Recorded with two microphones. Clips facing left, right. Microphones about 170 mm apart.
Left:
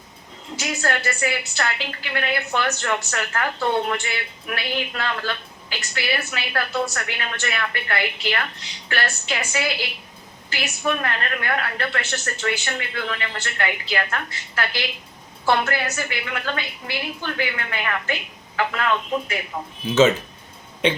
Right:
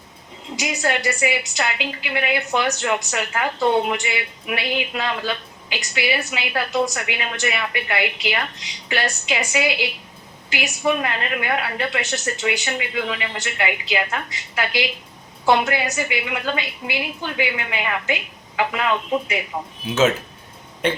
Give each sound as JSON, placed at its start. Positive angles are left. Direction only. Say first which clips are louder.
{"t": 0.5, "sound": "a woman's voice", "louder": "right 2 dB", "side_deg": -15}